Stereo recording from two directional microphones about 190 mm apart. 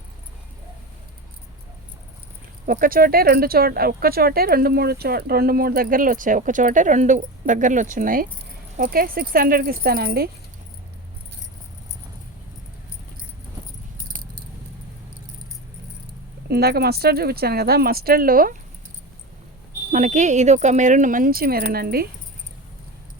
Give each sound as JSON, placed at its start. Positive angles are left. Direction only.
{"t": 2.6, "sound": "speech", "side_deg": -45}
{"t": 16.5, "sound": "speech", "side_deg": -55}
{"t": 19.9, "sound": "speech", "side_deg": -40}